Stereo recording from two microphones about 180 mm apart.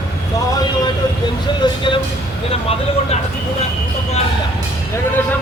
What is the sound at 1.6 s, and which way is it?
Speech, 25° left (ahead or behind).